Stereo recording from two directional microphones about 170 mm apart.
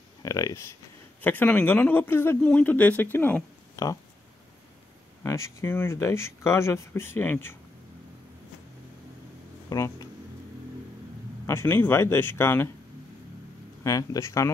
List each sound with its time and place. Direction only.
0.2 s speech: 20° left (ahead or behind)
5.2 s speech: 15° left (ahead or behind)
9.7 s speech: 20° left (ahead or behind)
11.4 s speech: 15° left (ahead or behind)
13.8 s speech: 20° left (ahead or behind)